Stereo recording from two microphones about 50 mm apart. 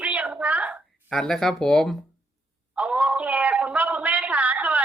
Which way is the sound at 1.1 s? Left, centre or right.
Centre.